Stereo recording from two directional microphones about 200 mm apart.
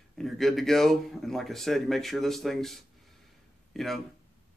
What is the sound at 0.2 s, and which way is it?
Speech, centre (ahead or behind).